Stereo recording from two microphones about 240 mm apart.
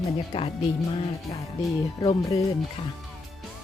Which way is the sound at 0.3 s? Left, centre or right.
Left.